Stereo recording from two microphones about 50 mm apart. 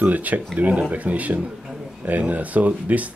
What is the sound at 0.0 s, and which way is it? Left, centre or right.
Speech, right.